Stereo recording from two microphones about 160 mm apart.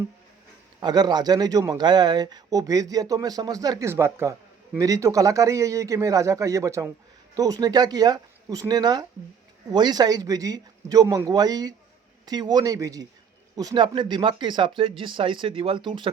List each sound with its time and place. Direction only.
0.8 s speech: 25° right (ahead or behind)